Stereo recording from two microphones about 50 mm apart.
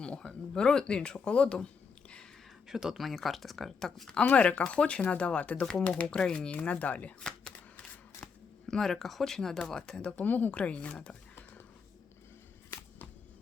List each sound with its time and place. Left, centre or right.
0.0 s speech: centre
1.5 s a sound: centre
2.6 s speech: centre
3.0 s speech: centre
4.3 s speech: left
7.2 s shuffling cards: centre
8.6 s speech: centre
10.2 s speech: left
10.5 s speech: left